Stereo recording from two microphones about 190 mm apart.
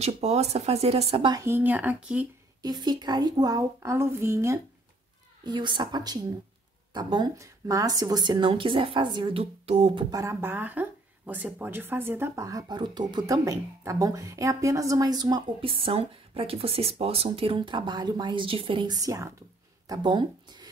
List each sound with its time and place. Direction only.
0.0 s speech: 35° right (ahead or behind); by 2.2 s 5° right (ahead or behind)
2.6 s speech: 20° right (ahead or behind)
10.1 s speech: 15° right (ahead or behind)